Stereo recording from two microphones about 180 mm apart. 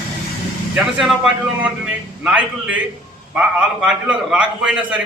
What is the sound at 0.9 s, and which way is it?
A man's voice, 5° right (ahead or behind).